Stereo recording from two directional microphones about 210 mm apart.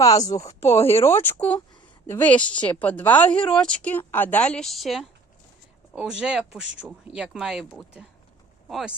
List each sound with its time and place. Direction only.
0.0 s speech: 15° left (ahead or behind); by 9.0 s 5° right (ahead or behind)